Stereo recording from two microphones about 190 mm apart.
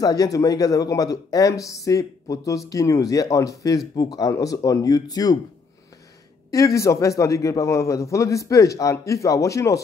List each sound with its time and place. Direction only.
0.0 s a man's voice: 20° left (ahead or behind)
6.5 s a man's voice: 15° left (ahead or behind)